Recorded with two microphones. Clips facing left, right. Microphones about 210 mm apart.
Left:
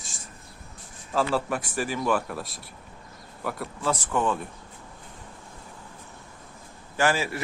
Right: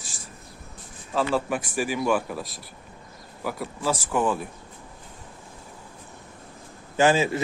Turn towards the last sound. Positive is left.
turn(degrees=-20)  # may be behind; listen again after turning